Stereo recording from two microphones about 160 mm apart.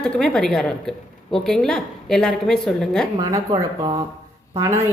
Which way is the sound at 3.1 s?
25° right (ahead or behind).